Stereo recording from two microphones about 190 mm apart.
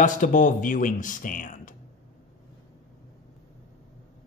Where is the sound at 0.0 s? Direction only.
45° left (ahead or behind).